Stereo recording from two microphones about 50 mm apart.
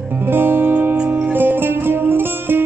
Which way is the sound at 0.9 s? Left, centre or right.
Right.